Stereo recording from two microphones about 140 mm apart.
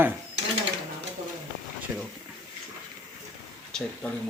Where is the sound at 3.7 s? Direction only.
5° left (ahead or behind).